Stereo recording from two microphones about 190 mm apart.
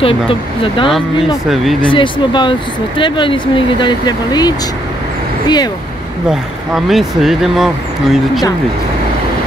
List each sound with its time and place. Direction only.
0.0 s speech: 30° left (ahead or behind)
6.2 s speech: centre (ahead or behind)